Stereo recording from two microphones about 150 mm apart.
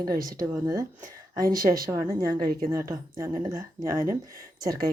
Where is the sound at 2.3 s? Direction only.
75° right (ahead or behind).